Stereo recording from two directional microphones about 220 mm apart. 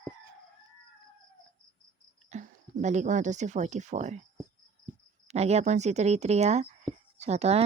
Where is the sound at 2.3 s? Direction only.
30° right (ahead or behind).